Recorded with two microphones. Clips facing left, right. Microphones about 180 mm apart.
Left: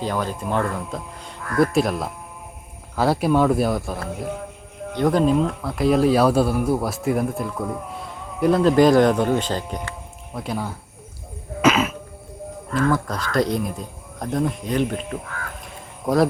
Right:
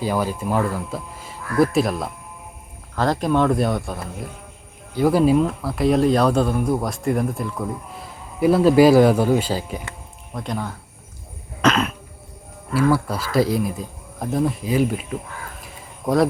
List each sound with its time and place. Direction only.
0.0 s a man's voice: 10° right (ahead or behind)
10.3 s speech: 5° left (ahead or behind)
12.7 s speech: 10° right (ahead or behind)
15.6 s crow: centre (ahead or behind)